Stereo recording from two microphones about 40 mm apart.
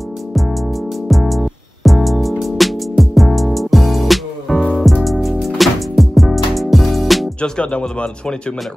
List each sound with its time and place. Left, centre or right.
0.3 s music: centre
7.4 s speech: centre